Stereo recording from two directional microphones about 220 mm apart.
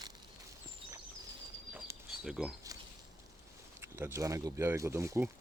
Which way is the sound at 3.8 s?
10° right (ahead or behind).